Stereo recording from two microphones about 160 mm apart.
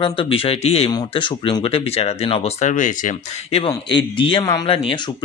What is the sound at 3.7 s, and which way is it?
Speech, 30° left (ahead or behind).